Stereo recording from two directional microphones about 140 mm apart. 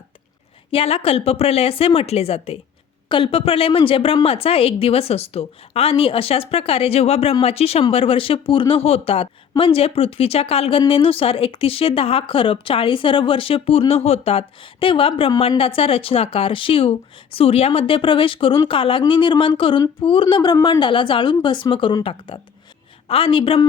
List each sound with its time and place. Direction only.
0.7 s a woman's voice: 45° left (ahead or behind)